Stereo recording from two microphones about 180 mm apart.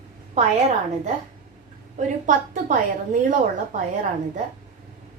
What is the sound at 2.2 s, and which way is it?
A woman's voice, 50° right (ahead or behind).